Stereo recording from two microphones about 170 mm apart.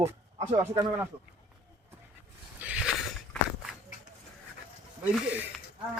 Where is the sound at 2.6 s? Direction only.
5° right (ahead or behind).